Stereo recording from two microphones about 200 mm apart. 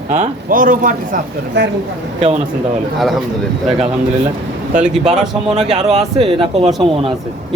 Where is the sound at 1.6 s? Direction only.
60° right (ahead or behind).